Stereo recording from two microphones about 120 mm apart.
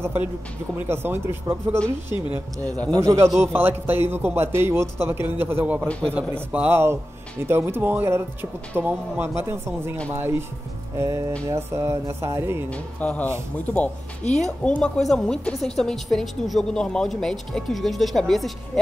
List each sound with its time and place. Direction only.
0.0 s a man's voice: 20° right (ahead or behind)
2.9 s a man's voice: 25° right (ahead or behind)
12.6 s speech: 10° left (ahead or behind)
14.4 s speech: 5° left (ahead or behind)